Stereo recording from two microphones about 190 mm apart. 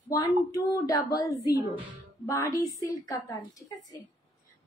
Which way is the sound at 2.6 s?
15° left (ahead or behind).